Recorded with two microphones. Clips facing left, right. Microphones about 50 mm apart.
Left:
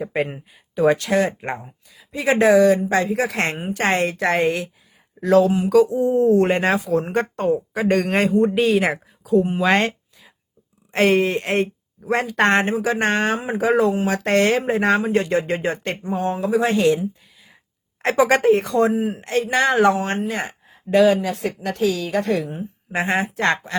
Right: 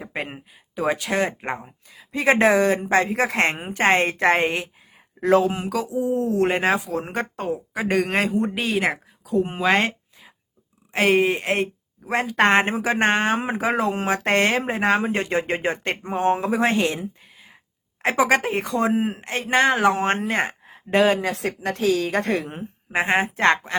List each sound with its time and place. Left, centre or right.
0.0 s speech: centre
1.1 s speech: right
5.6 s speech: centre
9.6 s a sound: centre
10.9 s speech: centre
12.5 s a woman's voice: right
18.0 s speech: centre
18.9 s speech: right
22.9 s speech: right